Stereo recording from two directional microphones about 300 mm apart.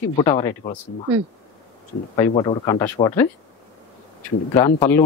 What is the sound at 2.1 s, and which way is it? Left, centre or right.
Speech, centre.